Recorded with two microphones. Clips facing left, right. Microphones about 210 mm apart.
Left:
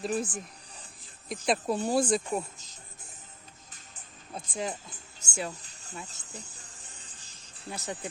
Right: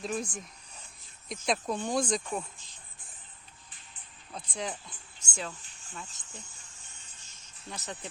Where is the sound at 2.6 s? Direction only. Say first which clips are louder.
Left 4 dB; 40° left (ahead or behind).